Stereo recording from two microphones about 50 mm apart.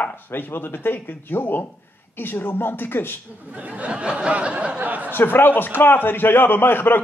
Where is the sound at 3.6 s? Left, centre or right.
Right.